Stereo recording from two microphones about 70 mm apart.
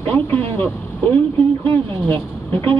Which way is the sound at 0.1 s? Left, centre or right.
Left.